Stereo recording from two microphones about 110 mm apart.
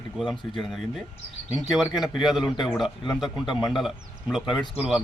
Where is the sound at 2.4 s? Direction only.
45° left (ahead or behind).